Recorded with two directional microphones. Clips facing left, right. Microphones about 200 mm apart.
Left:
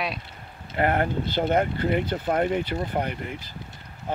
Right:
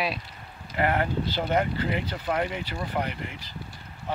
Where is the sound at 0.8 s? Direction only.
45° left (ahead or behind).